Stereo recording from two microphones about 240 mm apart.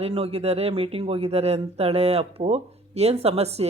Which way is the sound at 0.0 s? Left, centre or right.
Right.